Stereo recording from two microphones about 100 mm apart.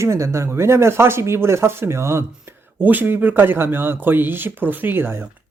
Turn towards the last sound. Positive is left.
turn(degrees=-20)  # may be behind; listen again after turning